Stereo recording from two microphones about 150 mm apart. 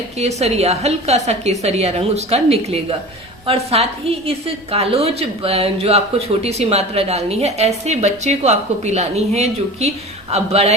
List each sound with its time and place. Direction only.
0.2 s a woman's voice: 45° right (ahead or behind)